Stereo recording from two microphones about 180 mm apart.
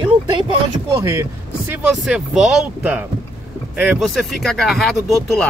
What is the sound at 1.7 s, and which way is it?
Speech, 5° right (ahead or behind).